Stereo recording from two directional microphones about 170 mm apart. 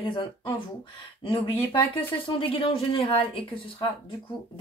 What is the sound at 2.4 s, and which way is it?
Speech, 35° left (ahead or behind).